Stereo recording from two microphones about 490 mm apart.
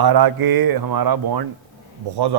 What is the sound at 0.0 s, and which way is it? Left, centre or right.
A man's voice, right.